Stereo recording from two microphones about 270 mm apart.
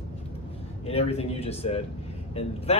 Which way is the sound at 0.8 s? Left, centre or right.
Left.